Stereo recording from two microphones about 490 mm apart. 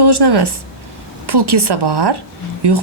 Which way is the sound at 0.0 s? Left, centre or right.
Right.